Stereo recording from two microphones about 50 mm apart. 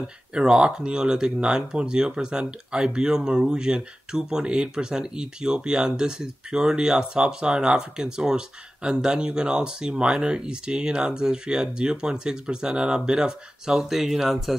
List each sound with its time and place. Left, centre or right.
0.0 s speech: centre